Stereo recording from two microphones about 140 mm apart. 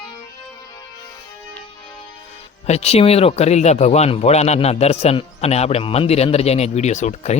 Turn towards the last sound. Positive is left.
turn(degrees=55)  # may be behind; listen again after turning